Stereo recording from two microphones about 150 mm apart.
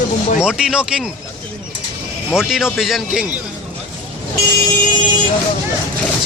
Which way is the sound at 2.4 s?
Centre (ahead or behind).